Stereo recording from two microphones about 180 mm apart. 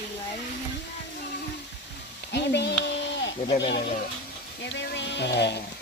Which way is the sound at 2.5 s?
70° left (ahead or behind).